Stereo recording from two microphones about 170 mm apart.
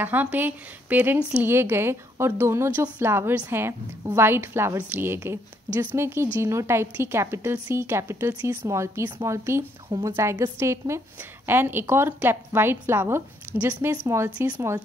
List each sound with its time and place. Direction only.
0.0 s speech: 10° right (ahead or behind)